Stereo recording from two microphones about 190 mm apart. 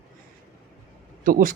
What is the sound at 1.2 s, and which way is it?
Speech, 45° right (ahead or behind).